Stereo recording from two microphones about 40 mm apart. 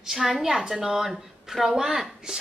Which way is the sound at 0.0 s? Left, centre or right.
Centre.